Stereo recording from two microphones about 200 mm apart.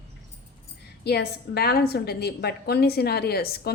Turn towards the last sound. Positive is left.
turn(degrees=50)  # may be behind; listen again after turning